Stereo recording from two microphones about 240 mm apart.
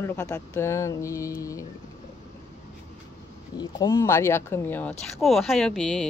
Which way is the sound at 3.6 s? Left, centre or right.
Centre.